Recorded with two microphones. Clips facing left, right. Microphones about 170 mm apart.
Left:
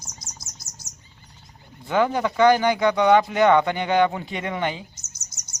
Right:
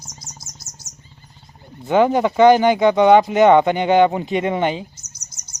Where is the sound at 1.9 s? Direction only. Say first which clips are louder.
Right 6 dB; 20° right (ahead or behind).